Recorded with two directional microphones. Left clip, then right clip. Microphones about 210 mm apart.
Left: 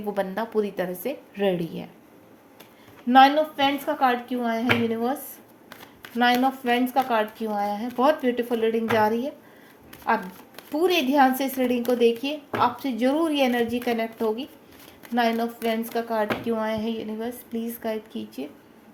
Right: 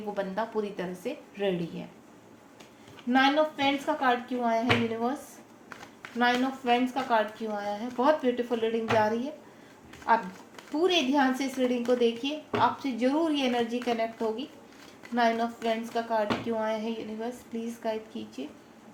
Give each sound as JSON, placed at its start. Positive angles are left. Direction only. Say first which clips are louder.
{"t": 0.1, "sound": "a woman's voice", "louder": "left 5 dB", "side_deg": 50}
{"t": 3.1, "sound": "a woman's voice", "louder": "left 8 dB", "side_deg": 50}
{"t": 6.0, "sound": "a sound", "louder": "left 4 dB", "side_deg": 50}
{"t": 6.7, "sound": "a woman's voice", "louder": "even", "side_deg": 50}